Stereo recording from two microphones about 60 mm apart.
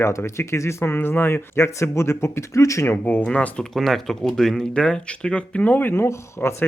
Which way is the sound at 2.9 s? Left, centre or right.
Left.